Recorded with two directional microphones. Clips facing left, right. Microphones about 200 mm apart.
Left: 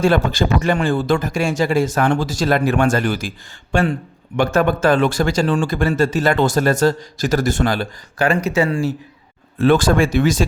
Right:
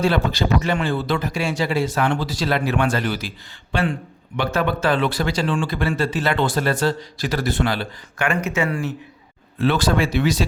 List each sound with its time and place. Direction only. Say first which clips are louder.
0.0 s speech: left 4 dB; 50° left (ahead or behind)
9.6 s speech: left 5 dB; 50° left (ahead or behind)